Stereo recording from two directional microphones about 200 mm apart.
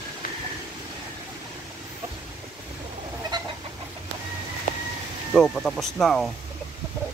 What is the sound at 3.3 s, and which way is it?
Chicken, 20° right (ahead or behind).